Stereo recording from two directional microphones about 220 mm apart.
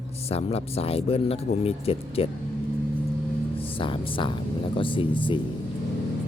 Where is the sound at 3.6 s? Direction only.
25° left (ahead or behind).